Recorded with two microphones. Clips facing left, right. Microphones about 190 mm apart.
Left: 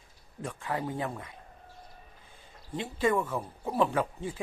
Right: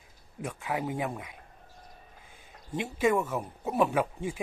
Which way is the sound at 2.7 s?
10° right (ahead or behind).